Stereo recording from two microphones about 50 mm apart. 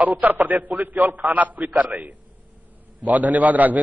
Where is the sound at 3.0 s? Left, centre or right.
Right.